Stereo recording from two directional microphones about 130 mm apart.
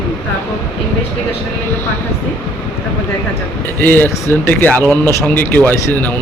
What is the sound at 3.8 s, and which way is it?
Speech, 15° left (ahead or behind).